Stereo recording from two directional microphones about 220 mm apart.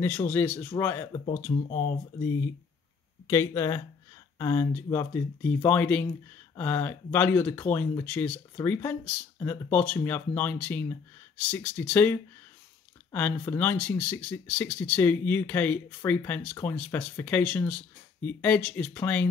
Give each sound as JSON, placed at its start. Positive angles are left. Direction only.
{"t": 0.0, "sound": "speech", "side_deg": 10}
{"t": 1.1, "sound": "speech", "side_deg": 30}
{"t": 3.3, "sound": "speech", "side_deg": 15}